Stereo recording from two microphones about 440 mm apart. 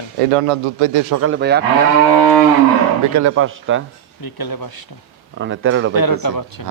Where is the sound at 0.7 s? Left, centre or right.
Right.